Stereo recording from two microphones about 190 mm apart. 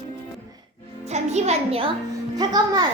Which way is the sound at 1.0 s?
35° right (ahead or behind).